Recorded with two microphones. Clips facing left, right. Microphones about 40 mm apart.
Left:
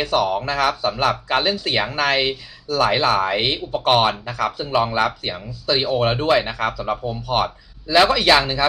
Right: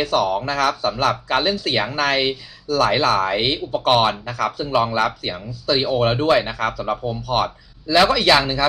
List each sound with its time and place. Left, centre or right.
0.0 s speech: centre
8.3 s speech: centre